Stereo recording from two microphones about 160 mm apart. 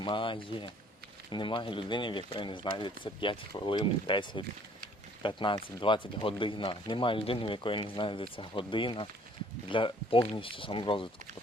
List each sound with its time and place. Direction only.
0.0 s speech: 30° left (ahead or behind)